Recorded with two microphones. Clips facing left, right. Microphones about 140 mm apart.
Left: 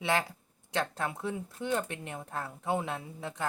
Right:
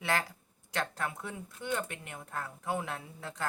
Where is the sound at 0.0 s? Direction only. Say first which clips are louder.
Left 3 dB; 20° left (ahead or behind).